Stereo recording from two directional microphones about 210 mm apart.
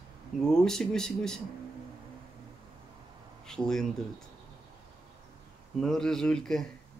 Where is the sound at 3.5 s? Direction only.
5° left (ahead or behind).